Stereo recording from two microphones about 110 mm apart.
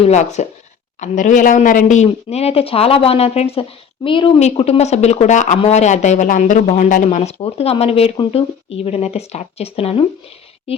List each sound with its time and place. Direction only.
0.0 s speech: 90° left; by 4.4 s 50° left (ahead or behind)
4.4 s speech: 80° left; by 10.1 s 60° left (ahead or behind)